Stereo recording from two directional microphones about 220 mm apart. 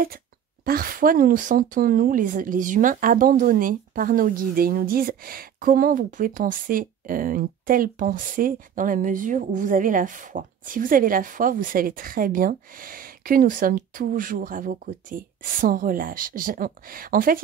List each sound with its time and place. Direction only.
0.7 s a woman's voice: 40° right (ahead or behind)